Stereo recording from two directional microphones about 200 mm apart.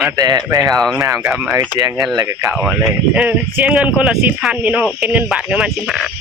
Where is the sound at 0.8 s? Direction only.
Centre (ahead or behind).